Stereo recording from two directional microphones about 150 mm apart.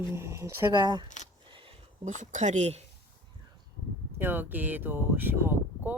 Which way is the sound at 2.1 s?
55° right (ahead or behind).